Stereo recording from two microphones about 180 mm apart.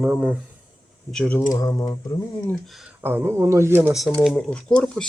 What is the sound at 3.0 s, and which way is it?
Speech, 10° right (ahead or behind).